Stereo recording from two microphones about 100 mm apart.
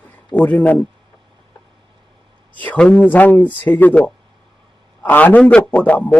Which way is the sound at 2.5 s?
15° left (ahead or behind).